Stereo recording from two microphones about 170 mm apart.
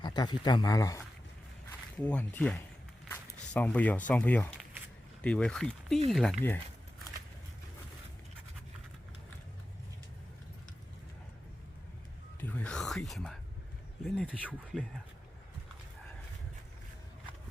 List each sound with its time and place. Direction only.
0.0 s speech: 25° left (ahead or behind)
2.0 s speech: 10° left (ahead or behind)
12.4 s whispering: 10° left (ahead or behind)
14.0 s speech: 10° left (ahead or behind)